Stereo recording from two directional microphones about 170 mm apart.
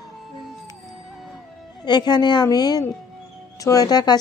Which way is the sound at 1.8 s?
25° left (ahead or behind).